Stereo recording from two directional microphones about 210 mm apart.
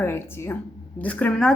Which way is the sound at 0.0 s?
10° left (ahead or behind).